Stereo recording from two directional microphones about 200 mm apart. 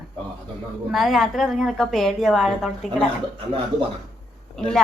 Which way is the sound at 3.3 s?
25° right (ahead or behind).